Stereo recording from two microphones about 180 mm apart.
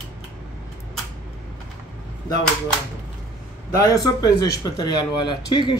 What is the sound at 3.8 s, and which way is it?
Speech, 20° left (ahead or behind).